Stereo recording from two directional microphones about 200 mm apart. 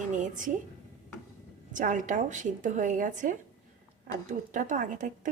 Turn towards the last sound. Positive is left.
turn(degrees=-40)  # may be behind; listen again after turning